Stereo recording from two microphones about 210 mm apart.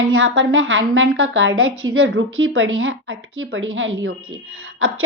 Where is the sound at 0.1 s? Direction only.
65° right (ahead or behind).